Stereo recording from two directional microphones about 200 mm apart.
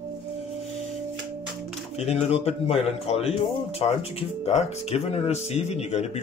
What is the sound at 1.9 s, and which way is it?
Speech, 30° left (ahead or behind).